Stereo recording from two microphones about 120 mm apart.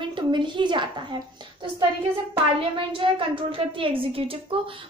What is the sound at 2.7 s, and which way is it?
A child's voice, 45° right (ahead or behind).